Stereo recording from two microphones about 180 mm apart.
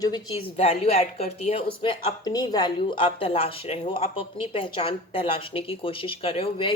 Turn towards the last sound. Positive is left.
turn(degrees=30)  # may be behind; listen again after turning